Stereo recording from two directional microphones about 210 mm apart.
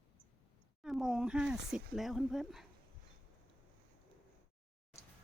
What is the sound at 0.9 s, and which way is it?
Speech, centre (ahead or behind).